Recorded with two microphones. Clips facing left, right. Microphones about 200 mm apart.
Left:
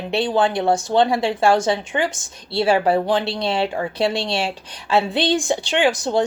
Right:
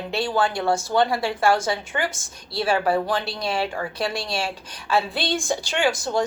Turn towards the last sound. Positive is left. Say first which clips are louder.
# left 4 dB
turn(degrees=20)  # may be behind; listen again after turning